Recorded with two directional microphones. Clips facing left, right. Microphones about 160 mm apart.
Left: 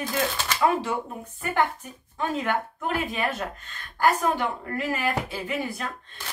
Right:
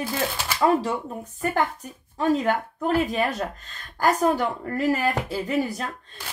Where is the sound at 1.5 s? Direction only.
40° right (ahead or behind).